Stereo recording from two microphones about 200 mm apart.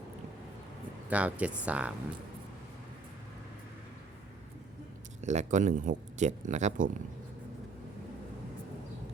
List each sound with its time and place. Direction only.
1.1 s speech: 5° right (ahead or behind)
5.2 s speech: 35° right (ahead or behind)